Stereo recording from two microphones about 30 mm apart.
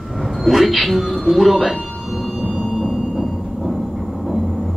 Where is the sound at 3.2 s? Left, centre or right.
Centre.